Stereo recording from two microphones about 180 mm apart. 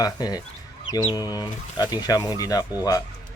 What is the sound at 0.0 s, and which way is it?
Speech, 20° left (ahead or behind).